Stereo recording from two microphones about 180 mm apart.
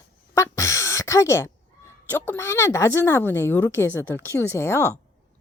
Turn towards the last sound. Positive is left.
turn(degrees=15)  # may be behind; listen again after turning